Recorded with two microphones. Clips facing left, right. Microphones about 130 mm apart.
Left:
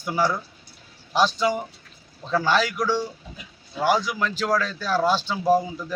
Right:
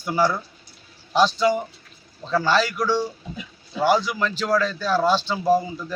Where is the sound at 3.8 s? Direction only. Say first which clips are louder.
Right 2 dB; 10° left (ahead or behind).